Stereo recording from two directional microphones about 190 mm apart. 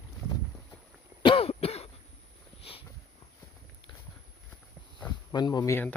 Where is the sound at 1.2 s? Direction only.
30° left (ahead or behind).